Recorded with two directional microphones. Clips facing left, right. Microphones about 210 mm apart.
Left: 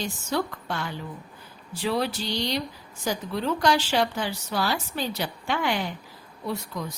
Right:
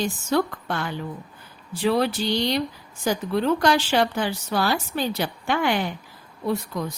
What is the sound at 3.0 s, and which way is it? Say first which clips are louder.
Speech: right 5 dB; 55° right (ahead or behind).